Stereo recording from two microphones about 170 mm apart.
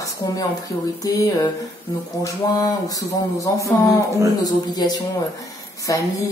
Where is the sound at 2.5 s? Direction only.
20° left (ahead or behind).